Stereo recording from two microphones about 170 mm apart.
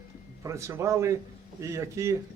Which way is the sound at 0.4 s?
15° right (ahead or behind).